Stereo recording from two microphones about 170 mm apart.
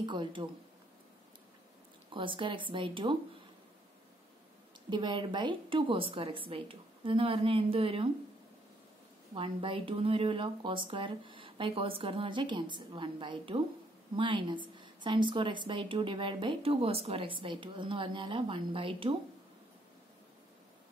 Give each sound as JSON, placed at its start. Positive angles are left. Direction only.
{"t": 0.0, "sound": "a woman's voice", "side_deg": -30}
{"t": 2.0, "sound": "a woman's voice", "side_deg": -30}
{"t": 4.8, "sound": "a woman's voice", "side_deg": -25}
{"t": 9.3, "sound": "a woman's voice", "side_deg": -30}